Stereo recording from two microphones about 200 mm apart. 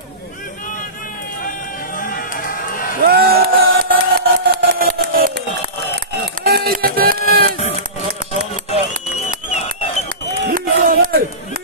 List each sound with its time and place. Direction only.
2.0 s run: 45° left (ahead or behind)
3.1 s a sound: 50° right (ahead or behind)
5.9 s run: 50° right (ahead or behind)
10.4 s crowd: 45° right (ahead or behind)